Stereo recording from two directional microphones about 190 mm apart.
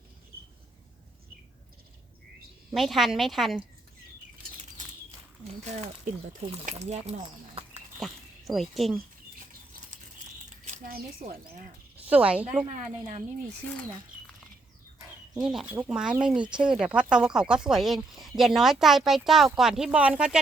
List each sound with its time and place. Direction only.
2.7 s speech: centre (ahead or behind)
5.6 s speech: 35° right (ahead or behind)
7.9 s speech: centre (ahead or behind)
10.7 s mechanisms: 45° right (ahead or behind)
12.0 s a woman's voice: 5° right (ahead or behind)
12.7 s speech: 35° right (ahead or behind)
15.4 s speech: centre (ahead or behind)